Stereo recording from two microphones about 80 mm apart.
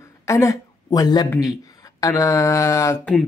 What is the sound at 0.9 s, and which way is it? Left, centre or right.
Speech, left.